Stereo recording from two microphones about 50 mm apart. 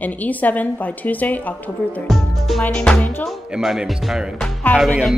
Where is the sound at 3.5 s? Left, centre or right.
Centre.